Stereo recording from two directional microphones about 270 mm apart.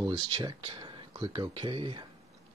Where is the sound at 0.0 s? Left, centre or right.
Centre.